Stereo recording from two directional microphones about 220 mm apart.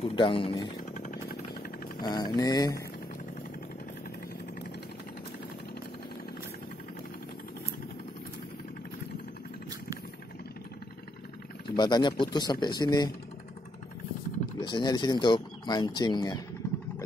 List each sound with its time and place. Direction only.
0.0 s speech: 25° left (ahead or behind)
0.7 s jackhammer: 35° left (ahead or behind)
2.0 s speech: 20° left (ahead or behind)
11.7 s speech: 20° left (ahead or behind)
14.6 s speech: 20° left (ahead or behind)